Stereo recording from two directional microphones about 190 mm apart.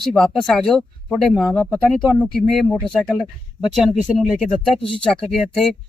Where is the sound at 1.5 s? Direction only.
15° left (ahead or behind).